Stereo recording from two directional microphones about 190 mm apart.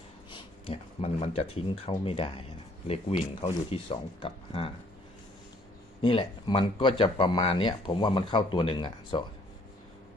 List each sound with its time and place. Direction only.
0.3 s speech: 35° left (ahead or behind)
6.0 s speech: 30° left (ahead or behind)